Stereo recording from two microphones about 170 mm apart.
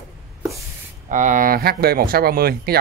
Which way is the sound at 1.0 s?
50° right (ahead or behind).